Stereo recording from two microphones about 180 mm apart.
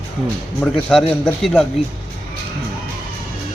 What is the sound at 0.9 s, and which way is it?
Speech, centre (ahead or behind).